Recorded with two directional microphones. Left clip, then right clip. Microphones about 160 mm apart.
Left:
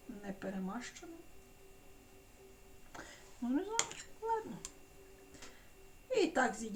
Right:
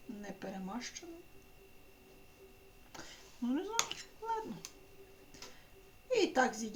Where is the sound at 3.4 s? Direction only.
30° right (ahead or behind).